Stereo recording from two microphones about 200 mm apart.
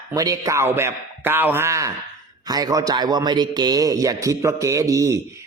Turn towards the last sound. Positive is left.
turn(degrees=-15)  # may be behind; listen again after turning